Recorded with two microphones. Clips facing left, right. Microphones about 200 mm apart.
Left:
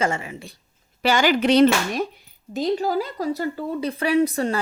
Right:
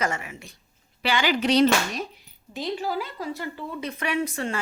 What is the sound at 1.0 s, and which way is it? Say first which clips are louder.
Speech: left 5 dB; 45° left (ahead or behind).